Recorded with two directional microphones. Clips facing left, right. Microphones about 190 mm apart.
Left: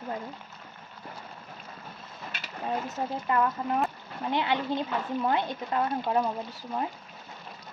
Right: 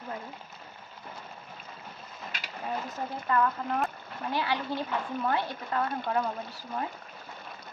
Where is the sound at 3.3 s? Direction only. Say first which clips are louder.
Even; 20° left (ahead or behind).